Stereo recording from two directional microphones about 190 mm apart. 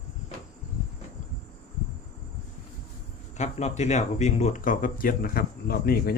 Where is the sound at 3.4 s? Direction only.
35° left (ahead or behind); by 6.2 s 50° left (ahead or behind).